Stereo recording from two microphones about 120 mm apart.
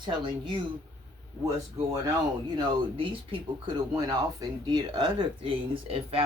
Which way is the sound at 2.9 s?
50° right (ahead or behind).